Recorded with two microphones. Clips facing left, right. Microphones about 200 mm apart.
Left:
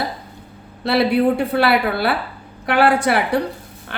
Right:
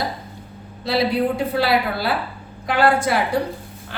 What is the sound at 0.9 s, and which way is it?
A woman's voice, 65° left (ahead or behind).